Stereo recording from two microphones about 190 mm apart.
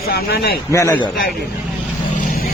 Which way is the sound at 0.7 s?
15° left (ahead or behind).